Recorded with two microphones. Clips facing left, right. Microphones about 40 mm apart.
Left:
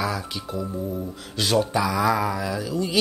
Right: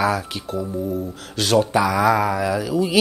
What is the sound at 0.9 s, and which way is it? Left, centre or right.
Speech, centre.